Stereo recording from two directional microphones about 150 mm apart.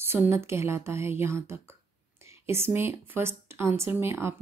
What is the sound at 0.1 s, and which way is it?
Speech, 15° right (ahead or behind).